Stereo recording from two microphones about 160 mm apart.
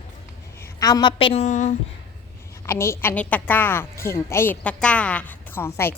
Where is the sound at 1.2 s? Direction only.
40° left (ahead or behind).